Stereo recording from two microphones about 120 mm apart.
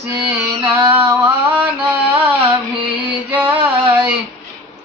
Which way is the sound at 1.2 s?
15° right (ahead or behind).